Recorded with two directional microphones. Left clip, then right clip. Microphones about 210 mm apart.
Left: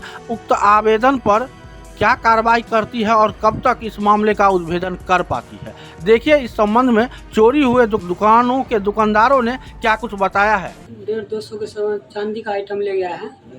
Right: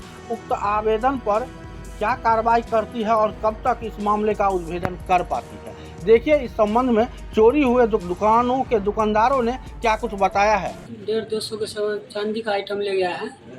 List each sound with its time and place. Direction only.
0.3 s speech: 55° left (ahead or behind)
0.6 s speech: 35° left (ahead or behind)
10.7 s speech: 10° left (ahead or behind)